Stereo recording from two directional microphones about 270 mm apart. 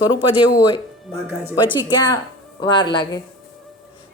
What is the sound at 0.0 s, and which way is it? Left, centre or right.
A woman's voice, centre.